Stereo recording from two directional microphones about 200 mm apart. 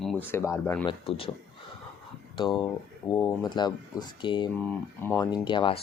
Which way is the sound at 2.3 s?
20° left (ahead or behind).